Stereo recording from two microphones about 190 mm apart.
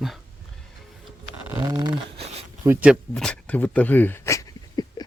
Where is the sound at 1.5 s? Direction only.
20° right (ahead or behind).